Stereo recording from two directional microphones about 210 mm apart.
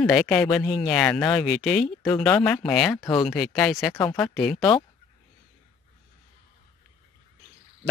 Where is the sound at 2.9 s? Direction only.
15° left (ahead or behind).